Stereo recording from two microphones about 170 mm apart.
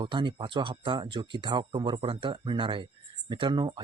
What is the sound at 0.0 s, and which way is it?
Speech, 30° right (ahead or behind).